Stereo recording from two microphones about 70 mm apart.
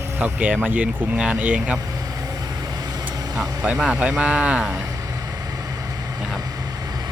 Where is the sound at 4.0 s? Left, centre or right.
Centre.